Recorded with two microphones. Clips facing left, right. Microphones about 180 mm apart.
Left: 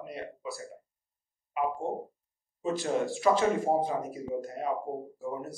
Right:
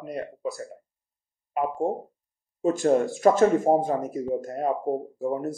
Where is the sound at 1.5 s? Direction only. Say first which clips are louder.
Right 5 dB; 50° right (ahead or behind).